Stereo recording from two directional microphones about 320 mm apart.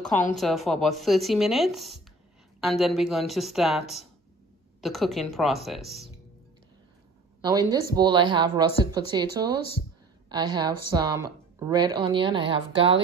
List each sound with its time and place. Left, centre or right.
0.1 s a woman's voice: left
0.4 s speech: centre
7.9 s a woman's voice: centre